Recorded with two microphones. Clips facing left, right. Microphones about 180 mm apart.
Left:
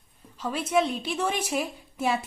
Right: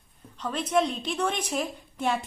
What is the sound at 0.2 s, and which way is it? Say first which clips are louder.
A woman's voice: left 1 dB; 10° left (ahead or behind).